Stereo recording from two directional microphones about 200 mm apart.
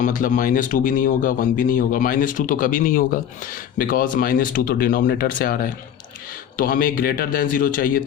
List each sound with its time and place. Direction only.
0.0 s speech: 40° left (ahead or behind)